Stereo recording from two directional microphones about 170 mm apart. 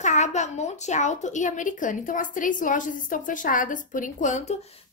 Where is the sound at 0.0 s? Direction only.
45° left (ahead or behind).